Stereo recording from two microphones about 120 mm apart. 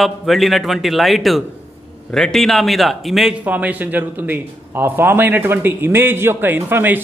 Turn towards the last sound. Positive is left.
turn(degrees=-15)  # may be behind; listen again after turning